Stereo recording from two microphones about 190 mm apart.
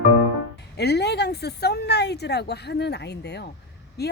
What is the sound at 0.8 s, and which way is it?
Speech, 60° left (ahead or behind).